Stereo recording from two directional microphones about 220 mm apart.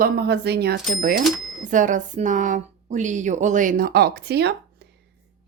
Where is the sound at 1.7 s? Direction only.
35° right (ahead or behind).